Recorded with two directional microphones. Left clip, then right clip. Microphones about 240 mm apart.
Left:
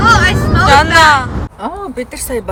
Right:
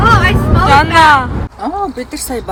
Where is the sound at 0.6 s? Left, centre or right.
Centre.